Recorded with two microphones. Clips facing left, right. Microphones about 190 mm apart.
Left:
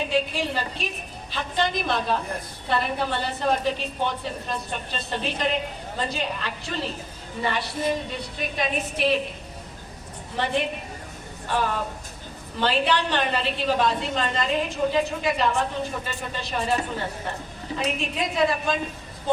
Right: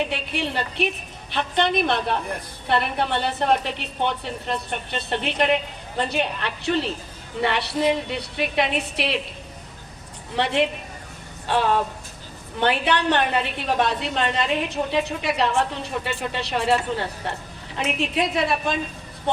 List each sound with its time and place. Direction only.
0.0 s a woman's voice: 65° right (ahead or behind)
10.3 s a woman's voice: 70° right (ahead or behind)